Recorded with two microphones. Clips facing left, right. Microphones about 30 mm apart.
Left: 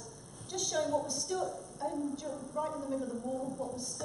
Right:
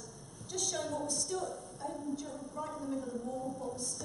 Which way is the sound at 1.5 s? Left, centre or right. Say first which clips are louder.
Left 1 dB; right.